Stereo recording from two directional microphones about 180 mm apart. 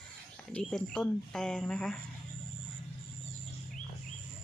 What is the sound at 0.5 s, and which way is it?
Speech, 5° left (ahead or behind).